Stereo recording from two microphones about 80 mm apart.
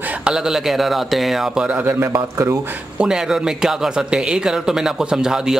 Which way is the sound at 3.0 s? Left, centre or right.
Centre.